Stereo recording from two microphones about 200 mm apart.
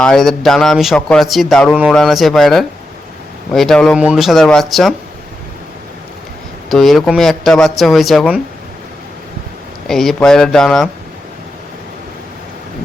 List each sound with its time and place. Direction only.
0.0 s a man's voice: centre (ahead or behind)
6.7 s a man's voice: centre (ahead or behind)
9.8 s a man's voice: centre (ahead or behind)